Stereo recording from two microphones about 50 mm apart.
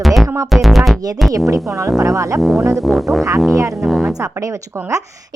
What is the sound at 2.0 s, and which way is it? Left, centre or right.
Speech, right.